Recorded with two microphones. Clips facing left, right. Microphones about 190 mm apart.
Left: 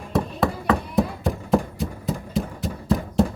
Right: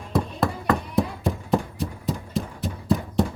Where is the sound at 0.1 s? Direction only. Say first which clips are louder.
Left 1 dB; centre (ahead or behind).